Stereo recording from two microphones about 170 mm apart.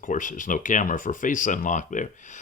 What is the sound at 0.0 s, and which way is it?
Speech, 50° left (ahead or behind).